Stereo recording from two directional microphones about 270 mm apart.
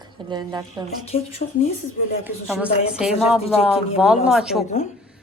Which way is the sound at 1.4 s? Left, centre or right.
Left.